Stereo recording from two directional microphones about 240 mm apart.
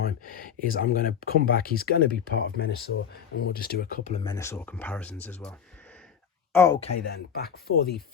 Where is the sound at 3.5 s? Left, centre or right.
Left.